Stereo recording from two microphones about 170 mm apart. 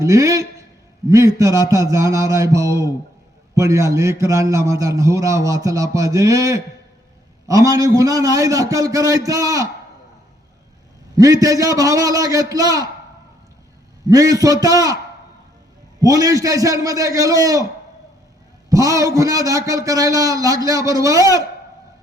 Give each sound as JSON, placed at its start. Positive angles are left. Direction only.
{"t": 0.0, "sound": "a man's voice", "side_deg": -20}
{"t": 11.2, "sound": "a man's voice", "side_deg": -20}
{"t": 14.1, "sound": "a man's voice", "side_deg": -20}
{"t": 16.0, "sound": "a man's voice", "side_deg": -20}
{"t": 18.7, "sound": "a man's voice", "side_deg": -20}